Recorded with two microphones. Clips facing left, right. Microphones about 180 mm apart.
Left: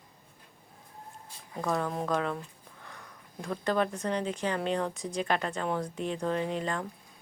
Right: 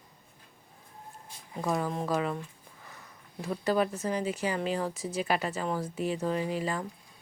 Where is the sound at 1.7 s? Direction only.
Centre (ahead or behind).